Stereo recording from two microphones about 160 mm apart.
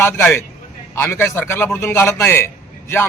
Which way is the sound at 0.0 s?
15° left (ahead or behind).